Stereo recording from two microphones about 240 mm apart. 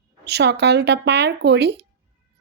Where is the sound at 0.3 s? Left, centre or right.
Right.